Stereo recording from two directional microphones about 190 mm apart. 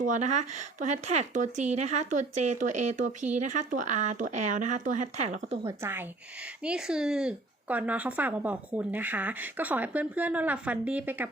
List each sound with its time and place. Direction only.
0.0 s speech: 40° right (ahead or behind)
5.6 s speech: 10° right (ahead or behind)